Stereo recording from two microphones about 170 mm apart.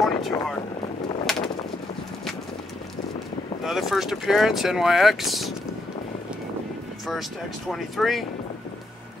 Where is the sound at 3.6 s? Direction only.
Centre (ahead or behind).